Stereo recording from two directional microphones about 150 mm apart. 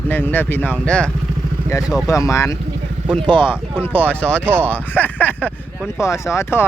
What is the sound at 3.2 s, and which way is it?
Speech, 35° right (ahead or behind).